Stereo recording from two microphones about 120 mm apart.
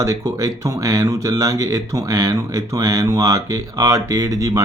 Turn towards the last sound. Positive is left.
turn(degrees=-30)  # may be behind; listen again after turning